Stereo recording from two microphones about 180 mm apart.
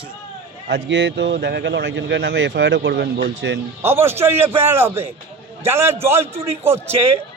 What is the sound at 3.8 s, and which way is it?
A man's voice, 10° right (ahead or behind).